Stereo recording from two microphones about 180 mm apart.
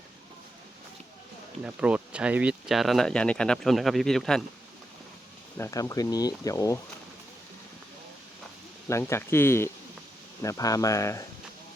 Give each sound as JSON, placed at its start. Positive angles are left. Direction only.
{"t": 1.6, "sound": "speech", "side_deg": -5}
{"t": 5.5, "sound": "speech", "side_deg": 15}
{"t": 8.9, "sound": "speech", "side_deg": 15}